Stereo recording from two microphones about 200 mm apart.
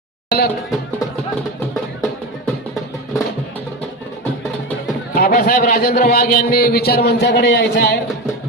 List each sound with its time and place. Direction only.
0.3 s music: 50° left (ahead or behind)
5.1 s a man's voice: 45° left (ahead or behind)